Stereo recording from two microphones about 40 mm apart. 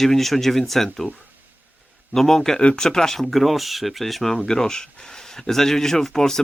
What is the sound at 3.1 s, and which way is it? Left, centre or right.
Speech, centre.